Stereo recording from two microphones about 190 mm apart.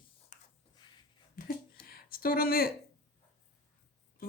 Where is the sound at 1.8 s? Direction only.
50° left (ahead or behind).